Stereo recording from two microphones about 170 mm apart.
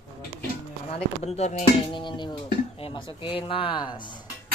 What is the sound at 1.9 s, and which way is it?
A woman's voice, 30° left (ahead or behind).